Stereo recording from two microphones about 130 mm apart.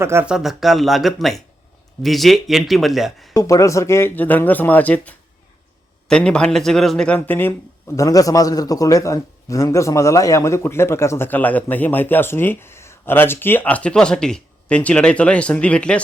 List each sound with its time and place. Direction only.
0.0 s speech: 20° right (ahead or behind)
0.3 s speech: 5° right (ahead or behind)
3.3 s a man's voice: 25° left (ahead or behind); by 7.2 s 5° left (ahead or behind)
7.2 s a man's voice: 15° left (ahead or behind)